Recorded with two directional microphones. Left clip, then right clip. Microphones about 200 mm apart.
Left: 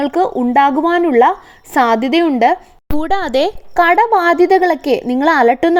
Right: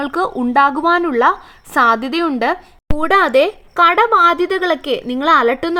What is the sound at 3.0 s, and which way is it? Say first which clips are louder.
Speech: right 3 dB; 35° left (ahead or behind).